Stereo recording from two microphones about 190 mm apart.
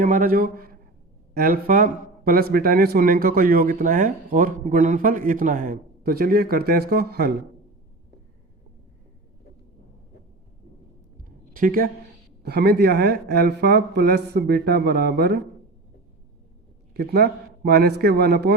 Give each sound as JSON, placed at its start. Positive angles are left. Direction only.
{"t": 0.0, "sound": "a man's voice", "side_deg": -45}
{"t": 11.2, "sound": "a sound", "side_deg": -50}
{"t": 12.4, "sound": "speech", "side_deg": -55}
{"t": 16.9, "sound": "speech", "side_deg": -55}